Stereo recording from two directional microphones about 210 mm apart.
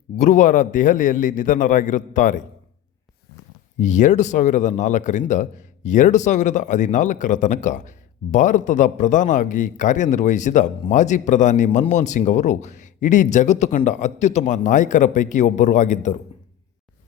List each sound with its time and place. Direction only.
0.2 s speech: 35° left (ahead or behind)
3.8 s speech: 35° left (ahead or behind)